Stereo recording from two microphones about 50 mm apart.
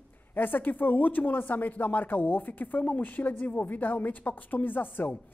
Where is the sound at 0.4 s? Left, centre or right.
Left.